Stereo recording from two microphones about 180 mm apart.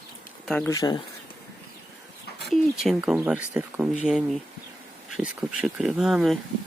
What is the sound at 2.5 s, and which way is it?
Speech, centre (ahead or behind).